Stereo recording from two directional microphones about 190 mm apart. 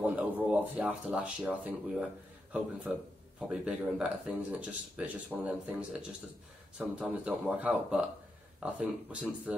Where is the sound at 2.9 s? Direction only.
10° right (ahead or behind).